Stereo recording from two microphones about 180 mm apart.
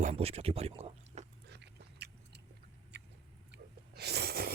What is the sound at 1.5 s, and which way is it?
Biting, 70° right (ahead or behind).